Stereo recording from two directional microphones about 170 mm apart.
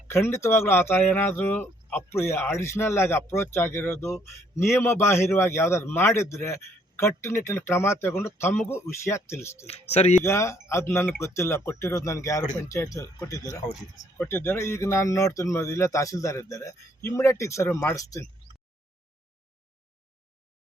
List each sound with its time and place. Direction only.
0.1 s speech: 15° left (ahead or behind)
9.6 s speech: 40° left (ahead or behind)
10.2 s speech: 15° left (ahead or behind)